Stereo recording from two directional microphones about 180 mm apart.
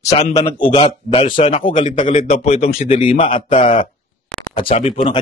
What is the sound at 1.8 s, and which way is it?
A man's voice, 45° left (ahead or behind).